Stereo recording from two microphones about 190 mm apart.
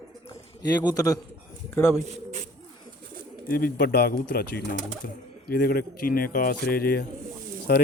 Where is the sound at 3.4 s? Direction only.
50° left (ahead or behind).